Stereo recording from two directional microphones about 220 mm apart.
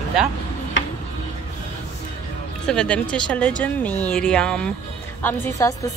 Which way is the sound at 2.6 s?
5° left (ahead or behind).